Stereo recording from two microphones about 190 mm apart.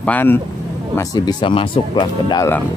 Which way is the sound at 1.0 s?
20° left (ahead or behind).